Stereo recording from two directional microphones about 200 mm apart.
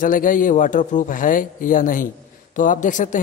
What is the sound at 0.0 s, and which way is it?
Speech, 40° left (ahead or behind).